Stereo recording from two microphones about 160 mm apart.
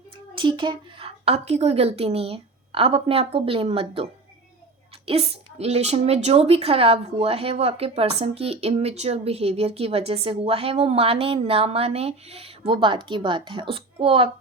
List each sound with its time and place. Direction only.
0.3 s a woman's voice: 30° right (ahead or behind)